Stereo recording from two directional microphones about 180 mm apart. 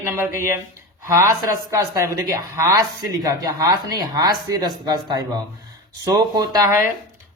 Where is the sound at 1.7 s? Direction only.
20° right (ahead or behind).